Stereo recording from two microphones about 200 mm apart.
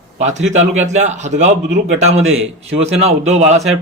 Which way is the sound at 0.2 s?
35° right (ahead or behind).